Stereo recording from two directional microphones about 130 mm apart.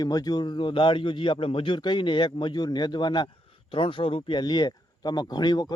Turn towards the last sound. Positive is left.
turn(degrees=30)  # may be behind; listen again after turning